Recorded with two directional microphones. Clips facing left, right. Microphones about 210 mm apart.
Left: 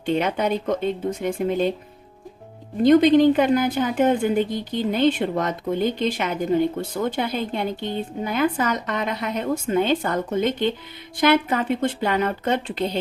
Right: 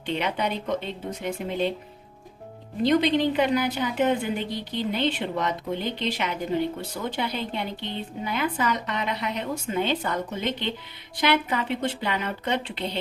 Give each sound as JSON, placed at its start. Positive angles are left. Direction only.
{"t": 0.0, "sound": "a woman's voice", "side_deg": 45}
{"t": 2.8, "sound": "a woman's voice", "side_deg": 50}